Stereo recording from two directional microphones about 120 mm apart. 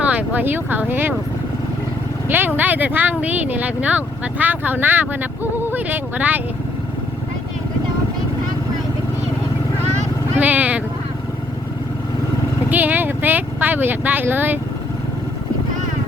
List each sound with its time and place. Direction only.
0.0 s speech: 10° right (ahead or behind)
2.6 s speech: 15° right (ahead or behind)
10.3 s speech: 15° right (ahead or behind)
12.7 s speech: 15° right (ahead or behind)